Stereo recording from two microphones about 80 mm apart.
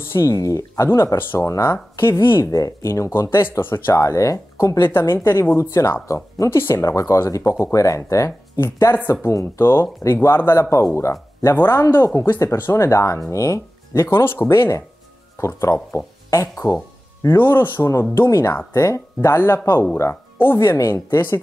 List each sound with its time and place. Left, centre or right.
0.1 s speech: left
0.8 s speech: left
2.5 s speech: left
8.5 s speech: left
13.9 s speech: left